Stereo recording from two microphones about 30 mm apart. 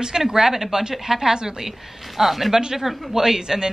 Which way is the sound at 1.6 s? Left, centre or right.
Centre.